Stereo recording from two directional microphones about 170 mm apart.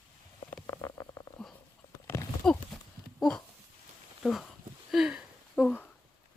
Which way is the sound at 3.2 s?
5° left (ahead or behind).